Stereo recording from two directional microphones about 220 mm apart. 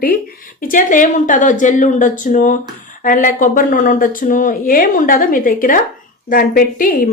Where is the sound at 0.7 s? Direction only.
35° left (ahead or behind).